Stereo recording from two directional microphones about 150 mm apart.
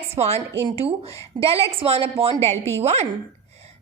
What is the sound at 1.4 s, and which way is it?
A woman's voice, 40° right (ahead or behind).